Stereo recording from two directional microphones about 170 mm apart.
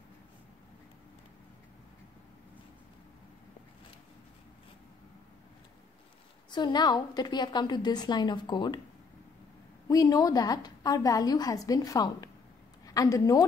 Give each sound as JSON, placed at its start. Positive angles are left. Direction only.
{"t": 6.5, "sound": "a woman's voice", "side_deg": 25}
{"t": 9.8, "sound": "a woman's voice", "side_deg": 20}